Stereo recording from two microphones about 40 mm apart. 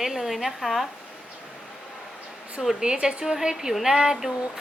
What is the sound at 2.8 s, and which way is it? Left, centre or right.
Speech, centre.